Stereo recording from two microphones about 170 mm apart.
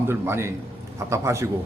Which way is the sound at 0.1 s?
15° right (ahead or behind).